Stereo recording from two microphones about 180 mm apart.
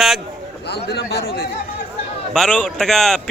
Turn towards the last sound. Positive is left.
turn(degrees=0)  # may be behind; listen again after turning